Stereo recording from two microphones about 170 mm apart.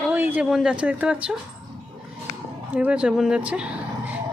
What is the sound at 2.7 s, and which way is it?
Speech, 10° right (ahead or behind).